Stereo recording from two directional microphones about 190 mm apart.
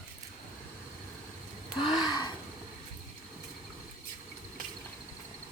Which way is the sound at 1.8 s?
20° left (ahead or behind).